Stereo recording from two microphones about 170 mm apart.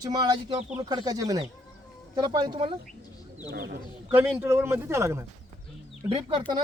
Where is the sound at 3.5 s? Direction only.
65° right (ahead or behind).